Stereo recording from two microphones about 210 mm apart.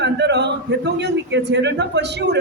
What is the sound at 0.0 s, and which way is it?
A man's voice, 55° right (ahead or behind).